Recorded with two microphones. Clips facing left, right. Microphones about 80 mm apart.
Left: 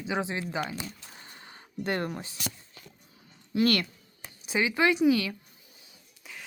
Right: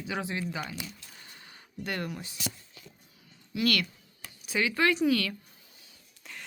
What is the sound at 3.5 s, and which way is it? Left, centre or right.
Speech, left.